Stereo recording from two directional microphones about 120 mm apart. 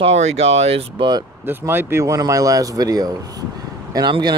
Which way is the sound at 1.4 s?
15° right (ahead or behind).